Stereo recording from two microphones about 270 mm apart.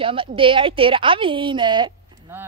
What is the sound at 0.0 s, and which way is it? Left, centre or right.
A woman's voice, centre.